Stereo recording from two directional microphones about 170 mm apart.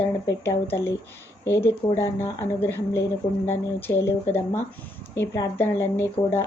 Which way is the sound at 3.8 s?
15° left (ahead or behind).